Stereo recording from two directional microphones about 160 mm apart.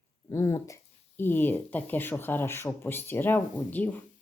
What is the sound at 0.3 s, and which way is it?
Speech, 20° left (ahead or behind).